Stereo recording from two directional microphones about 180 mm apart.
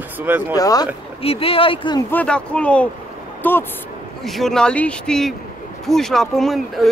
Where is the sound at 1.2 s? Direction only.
30° left (ahead or behind).